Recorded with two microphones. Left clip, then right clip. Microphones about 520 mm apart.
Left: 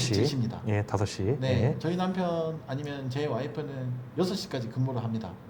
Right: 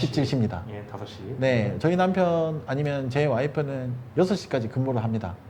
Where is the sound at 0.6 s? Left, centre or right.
Left.